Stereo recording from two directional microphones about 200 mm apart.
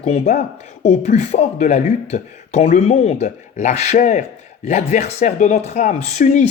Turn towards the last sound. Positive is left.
turn(degrees=35)  # may be behind; listen again after turning